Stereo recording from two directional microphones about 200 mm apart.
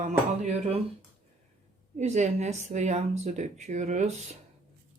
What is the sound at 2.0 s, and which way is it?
Speech, 35° right (ahead or behind).